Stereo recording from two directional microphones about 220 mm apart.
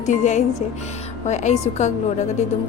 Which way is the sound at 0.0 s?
35° left (ahead or behind).